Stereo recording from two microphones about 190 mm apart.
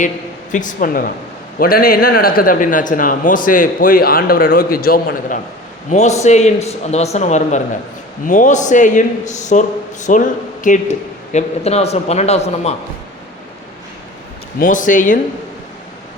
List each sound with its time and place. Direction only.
0.5 s a man's voice: 45° left (ahead or behind)
5.9 s a man's voice: 35° left (ahead or behind)
14.6 s a man's voice: 45° left (ahead or behind)